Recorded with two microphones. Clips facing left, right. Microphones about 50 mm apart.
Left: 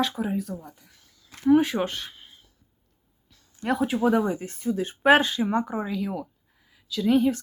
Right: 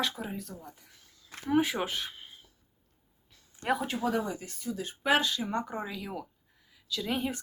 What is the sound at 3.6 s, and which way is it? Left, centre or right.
Speech, centre.